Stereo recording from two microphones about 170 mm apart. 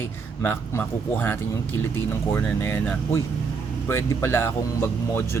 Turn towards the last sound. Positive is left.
turn(degrees=15)  # may be behind; listen again after turning